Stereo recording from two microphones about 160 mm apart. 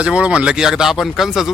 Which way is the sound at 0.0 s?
5° right (ahead or behind).